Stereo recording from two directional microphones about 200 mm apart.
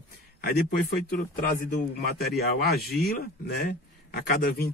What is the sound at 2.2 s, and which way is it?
A man's voice, 50° left (ahead or behind).